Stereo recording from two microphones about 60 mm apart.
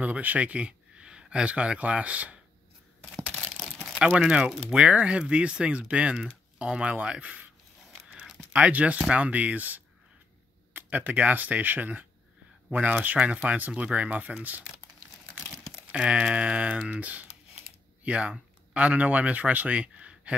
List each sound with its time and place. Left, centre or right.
0.0 s speech: right
4.3 s speech: centre
8.2 s a sound: centre
8.5 s speech: right
15.9 s speech: centre